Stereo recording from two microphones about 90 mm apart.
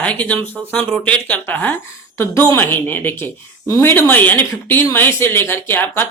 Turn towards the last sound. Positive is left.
turn(degrees=20)  # may be behind; listen again after turning